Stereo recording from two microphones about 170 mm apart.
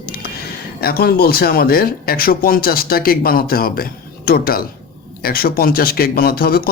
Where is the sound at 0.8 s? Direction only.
65° left (ahead or behind).